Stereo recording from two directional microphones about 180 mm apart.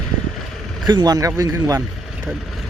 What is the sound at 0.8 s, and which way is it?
Speech, 25° right (ahead or behind).